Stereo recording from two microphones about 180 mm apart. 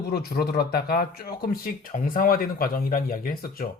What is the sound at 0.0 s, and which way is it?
Speech, 60° left (ahead or behind).